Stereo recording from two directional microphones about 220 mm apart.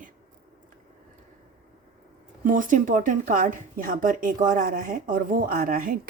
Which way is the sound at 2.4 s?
35° right (ahead or behind).